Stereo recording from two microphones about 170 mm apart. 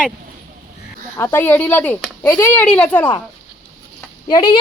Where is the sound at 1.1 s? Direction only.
15° left (ahead or behind).